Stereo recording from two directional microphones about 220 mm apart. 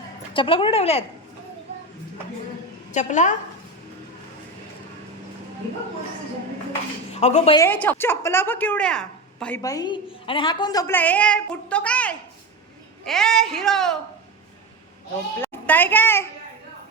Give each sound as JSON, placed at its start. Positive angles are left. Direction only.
{"t": 0.3, "sound": "a woman's voice", "side_deg": 25}
{"t": 2.9, "sound": "a woman's voice", "side_deg": 35}
{"t": 7.1, "sound": "speech", "side_deg": 30}
{"t": 7.5, "sound": "a woman's voice", "side_deg": 10}
{"t": 9.6, "sound": "a woman's voice", "side_deg": 15}
{"t": 15.4, "sound": "a child's voice", "side_deg": 10}